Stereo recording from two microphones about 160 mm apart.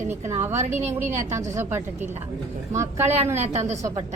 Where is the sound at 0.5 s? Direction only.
45° right (ahead or behind).